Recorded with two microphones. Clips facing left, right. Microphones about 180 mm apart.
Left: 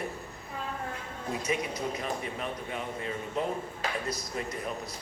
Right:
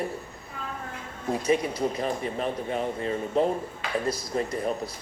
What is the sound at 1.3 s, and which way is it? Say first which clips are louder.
Speech: right 7 dB; 35° right (ahead or behind).